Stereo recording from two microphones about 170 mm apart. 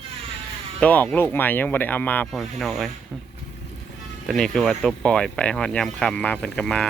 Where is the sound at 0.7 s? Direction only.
10° left (ahead or behind).